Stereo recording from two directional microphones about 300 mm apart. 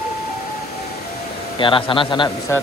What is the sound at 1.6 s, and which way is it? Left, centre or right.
Speech, centre.